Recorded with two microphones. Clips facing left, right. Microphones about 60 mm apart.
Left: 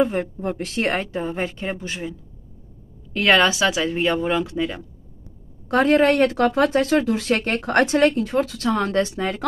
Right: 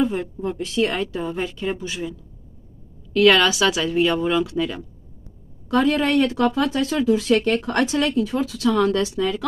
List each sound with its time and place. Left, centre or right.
0.0 s speech: left
1.0 s speech: left
5.7 s speech: left
8.6 s speech: left